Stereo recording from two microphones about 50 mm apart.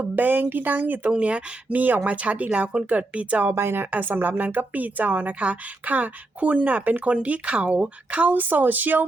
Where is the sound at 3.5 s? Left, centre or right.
Right.